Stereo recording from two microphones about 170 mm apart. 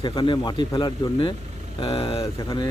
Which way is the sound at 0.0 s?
30° left (ahead or behind).